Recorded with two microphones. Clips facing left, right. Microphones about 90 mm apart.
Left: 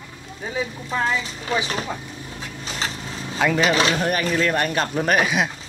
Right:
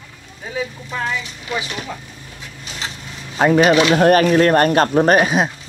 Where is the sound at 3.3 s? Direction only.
35° right (ahead or behind).